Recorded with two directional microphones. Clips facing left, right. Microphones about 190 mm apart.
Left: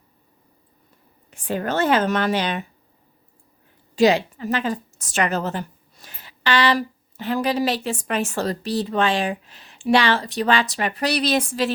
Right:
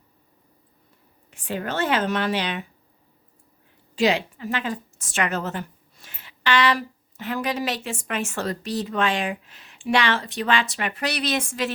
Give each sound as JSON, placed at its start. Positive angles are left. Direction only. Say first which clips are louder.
{"t": 1.3, "sound": "speech", "louder": "left 4 dB", "side_deg": 45}
{"t": 3.9, "sound": "a woman's voice", "louder": "left 5 dB", "side_deg": 40}